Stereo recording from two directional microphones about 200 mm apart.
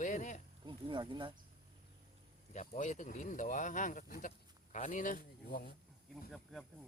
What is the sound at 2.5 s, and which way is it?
Speech, 40° left (ahead or behind).